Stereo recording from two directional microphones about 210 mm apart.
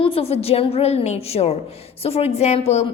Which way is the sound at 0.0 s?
25° left (ahead or behind).